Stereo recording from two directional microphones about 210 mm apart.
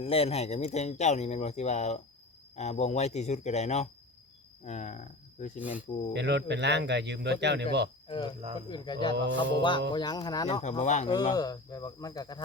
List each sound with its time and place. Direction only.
0.0 s speech: 30° left (ahead or behind)
5.5 s speech: 5° right (ahead or behind)
6.1 s speech: 55° right (ahead or behind)
8.0 s speech: 20° left (ahead or behind)
9.1 s speech: 60° right (ahead or behind)
9.6 s speech: 20° left (ahead or behind)
10.6 s speech: 35° left (ahead or behind)
11.3 s speech: 20° left (ahead or behind)